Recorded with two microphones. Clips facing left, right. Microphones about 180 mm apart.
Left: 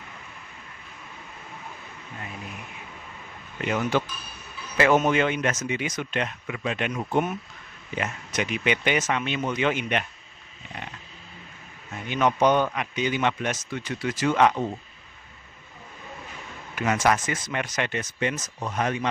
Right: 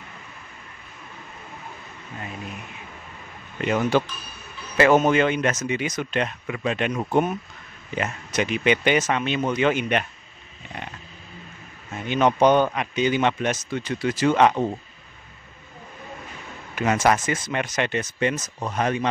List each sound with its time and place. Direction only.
3.9 s speech: 30° right (ahead or behind)
12.1 s a man's voice: 30° right (ahead or behind)
16.8 s a man's voice: 25° right (ahead or behind)